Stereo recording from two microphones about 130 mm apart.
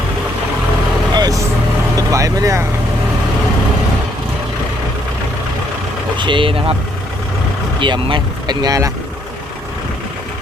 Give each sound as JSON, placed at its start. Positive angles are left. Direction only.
{"t": 1.1, "sound": "vehicle", "side_deg": -30}
{"t": 2.0, "sound": "speech", "side_deg": -25}
{"t": 6.1, "sound": "speech", "side_deg": -40}
{"t": 7.8, "sound": "speech", "side_deg": -40}